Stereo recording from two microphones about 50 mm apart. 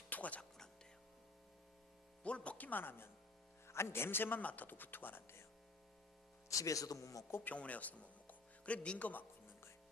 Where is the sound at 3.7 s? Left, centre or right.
Left.